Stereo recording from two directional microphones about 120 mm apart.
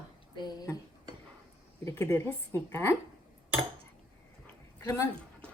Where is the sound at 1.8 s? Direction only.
20° left (ahead or behind).